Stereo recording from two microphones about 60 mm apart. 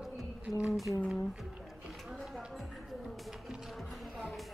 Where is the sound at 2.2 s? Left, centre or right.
Centre.